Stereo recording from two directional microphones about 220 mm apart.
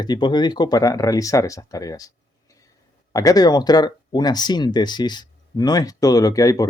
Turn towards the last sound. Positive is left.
turn(degrees=15)  # may be behind; listen again after turning